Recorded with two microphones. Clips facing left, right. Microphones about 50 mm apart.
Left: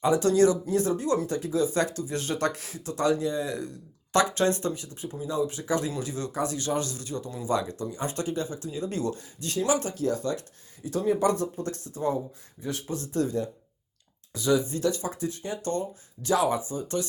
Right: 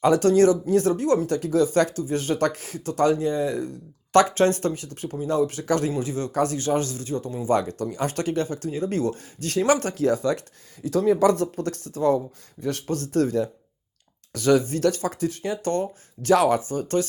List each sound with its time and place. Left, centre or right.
0.0 s speech: right
2.0 s speech: right
4.9 s speech: right
5.9 s speech: right
6.3 s speech: right
6.6 s speech: right
7.8 s speech: right
8.6 s speech: right
9.6 s speech: right
12.6 s speech: right
14.3 s speech: right
16.6 s speech: right